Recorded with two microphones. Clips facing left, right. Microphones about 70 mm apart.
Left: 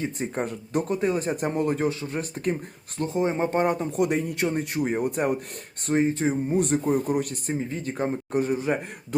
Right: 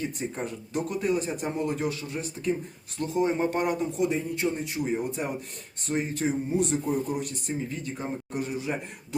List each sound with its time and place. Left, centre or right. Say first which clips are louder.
0.0 s a man's voice: left 3 dB; left
3.9 s speech: left 3 dB; left
5.9 s a man's voice: left 5 dB; left
6.5 s a man's voice: left 3 dB; left